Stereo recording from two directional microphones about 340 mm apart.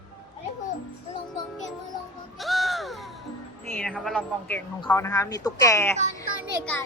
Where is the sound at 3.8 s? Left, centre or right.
Centre.